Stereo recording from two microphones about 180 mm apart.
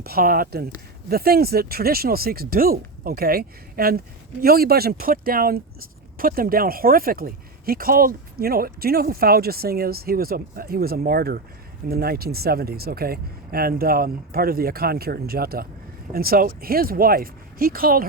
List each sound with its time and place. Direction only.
0.0 s speech: 55° right (ahead or behind)